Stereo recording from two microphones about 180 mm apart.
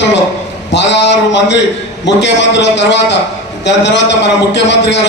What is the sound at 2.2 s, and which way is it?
A man's voice, 75° left (ahead or behind).